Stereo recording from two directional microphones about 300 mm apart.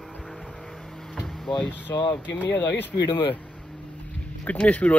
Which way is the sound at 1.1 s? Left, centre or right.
Centre.